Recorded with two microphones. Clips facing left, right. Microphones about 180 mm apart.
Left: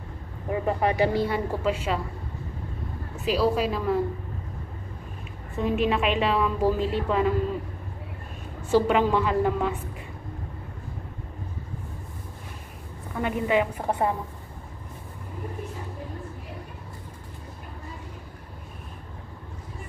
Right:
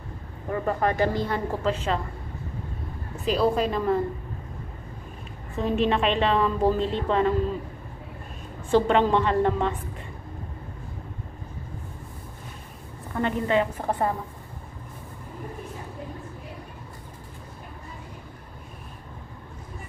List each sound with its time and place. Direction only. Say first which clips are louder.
0.5 s a woman's voice: even; 10° left (ahead or behind)
3.3 s a woman's voice: right 1 dB; 5° left (ahead or behind)
5.6 s a woman's voice: right 1 dB; 5° left (ahead or behind)
8.6 s a woman's voice: right 1 dB; 5° left (ahead or behind)
13.1 s a woman's voice: even; 10° left (ahead or behind)